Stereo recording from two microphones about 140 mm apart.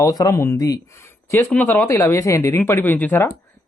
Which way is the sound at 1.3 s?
15° left (ahead or behind).